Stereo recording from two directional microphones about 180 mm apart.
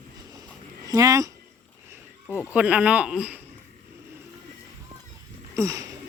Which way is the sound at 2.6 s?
5° right (ahead or behind).